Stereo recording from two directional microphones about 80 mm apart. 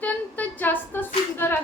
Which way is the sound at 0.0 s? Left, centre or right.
Left.